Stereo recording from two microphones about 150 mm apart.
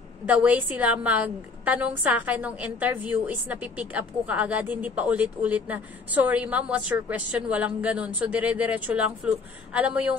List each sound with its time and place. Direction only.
0.3 s a woman's voice: 10° right (ahead or behind)